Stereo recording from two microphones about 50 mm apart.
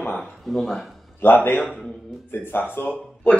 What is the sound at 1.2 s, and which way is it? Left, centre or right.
Speech, left.